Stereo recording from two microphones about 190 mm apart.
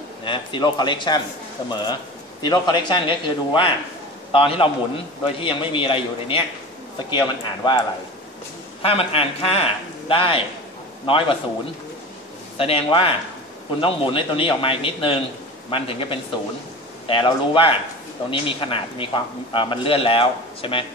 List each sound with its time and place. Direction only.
0.2 s a man's voice: 25° left (ahead or behind)
8.8 s a man's voice: 30° left (ahead or behind)
12.5 s a man's voice: 30° left (ahead or behind)